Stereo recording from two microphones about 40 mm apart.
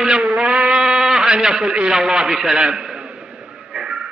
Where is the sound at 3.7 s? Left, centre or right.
Centre.